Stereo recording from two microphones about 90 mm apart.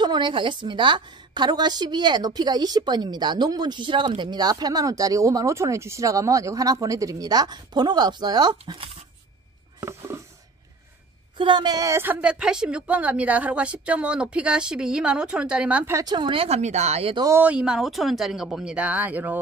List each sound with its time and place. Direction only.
0.0 s a woman's voice: 55° right (ahead or behind)
9.8 s a sound: 35° right (ahead or behind)
11.3 s a woman's voice: 60° right (ahead or behind)
11.9 s speech: 25° right (ahead or behind)
12.2 s a woman's voice: 10° right (ahead or behind)
15.9 s a woman's voice: 45° right (ahead or behind)
16.2 s speech: 70° right (ahead or behind)
17.4 s a woman's voice: 15° right (ahead or behind)
17.7 s a woman's voice: centre (ahead or behind); by 19.3 s 20° right (ahead or behind)